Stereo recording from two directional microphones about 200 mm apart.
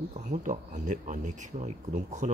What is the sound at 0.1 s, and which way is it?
Speech, 40° right (ahead or behind).